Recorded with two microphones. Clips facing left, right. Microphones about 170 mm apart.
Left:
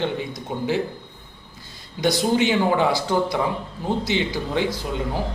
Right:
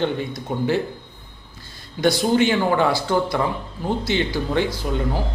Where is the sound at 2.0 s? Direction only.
20° left (ahead or behind).